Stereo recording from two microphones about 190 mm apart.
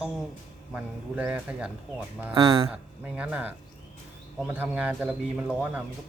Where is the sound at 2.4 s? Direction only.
25° right (ahead or behind).